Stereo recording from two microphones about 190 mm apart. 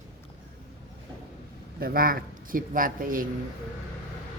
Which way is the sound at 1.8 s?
50° right (ahead or behind).